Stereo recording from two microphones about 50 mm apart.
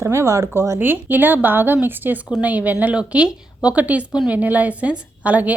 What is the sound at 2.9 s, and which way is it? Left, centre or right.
A woman's voice, centre.